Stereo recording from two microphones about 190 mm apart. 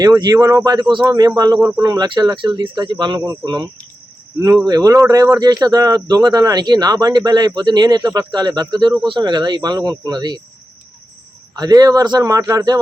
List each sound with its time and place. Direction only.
0.0 s speech: 20° right (ahead or behind)
11.5 s speech: 20° right (ahead or behind)